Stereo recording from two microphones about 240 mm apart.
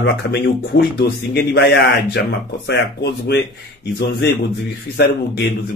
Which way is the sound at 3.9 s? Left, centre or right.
Left.